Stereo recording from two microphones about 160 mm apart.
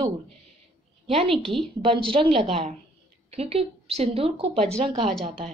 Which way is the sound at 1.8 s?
35° right (ahead or behind).